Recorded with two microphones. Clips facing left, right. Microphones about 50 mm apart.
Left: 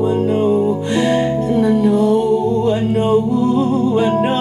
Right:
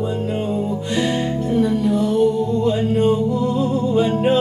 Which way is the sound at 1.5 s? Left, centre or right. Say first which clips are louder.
Left 3 dB; centre.